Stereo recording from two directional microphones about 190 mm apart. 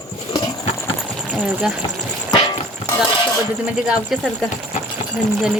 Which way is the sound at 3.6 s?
Centre (ahead or behind).